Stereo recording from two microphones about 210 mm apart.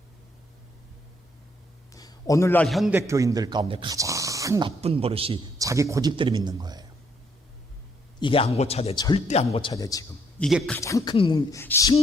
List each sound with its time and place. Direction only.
1.9 s a man's voice: 15° left (ahead or behind); by 3.0 s centre (ahead or behind)
3.1 s speech: 15° right (ahead or behind)
4.8 s a man's voice: 30° right (ahead or behind)
5.6 s a man's voice: 15° right (ahead or behind)
8.2 s speech: 25° left (ahead or behind)
10.4 s speech: centre (ahead or behind)
10.8 s speech: 15° left (ahead or behind)